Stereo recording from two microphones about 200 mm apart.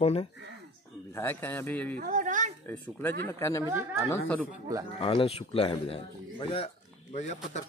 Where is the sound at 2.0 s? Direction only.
40° right (ahead or behind).